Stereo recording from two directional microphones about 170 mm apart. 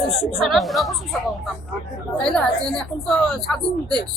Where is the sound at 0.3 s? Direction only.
Centre (ahead or behind).